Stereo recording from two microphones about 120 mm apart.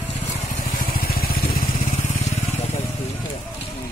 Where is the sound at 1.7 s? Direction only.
70° left (ahead or behind).